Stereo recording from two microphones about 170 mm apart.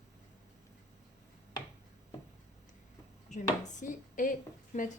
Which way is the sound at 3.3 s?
45° left (ahead or behind).